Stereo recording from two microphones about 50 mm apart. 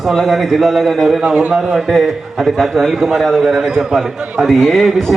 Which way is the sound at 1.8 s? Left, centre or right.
Centre.